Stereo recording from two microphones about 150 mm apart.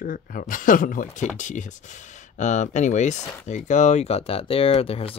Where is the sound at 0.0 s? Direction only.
65° left (ahead or behind).